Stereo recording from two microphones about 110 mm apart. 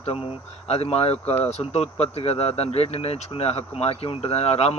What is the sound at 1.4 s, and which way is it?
Speech, 75° left (ahead or behind).